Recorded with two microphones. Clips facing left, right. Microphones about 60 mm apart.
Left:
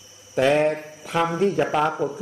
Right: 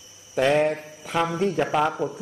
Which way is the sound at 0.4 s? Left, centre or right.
Centre.